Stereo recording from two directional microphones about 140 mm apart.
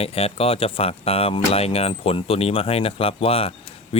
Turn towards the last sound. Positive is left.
turn(degrees=45)  # may be behind; listen again after turning